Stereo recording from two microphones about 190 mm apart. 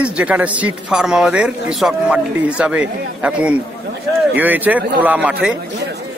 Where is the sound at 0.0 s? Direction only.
5° right (ahead or behind).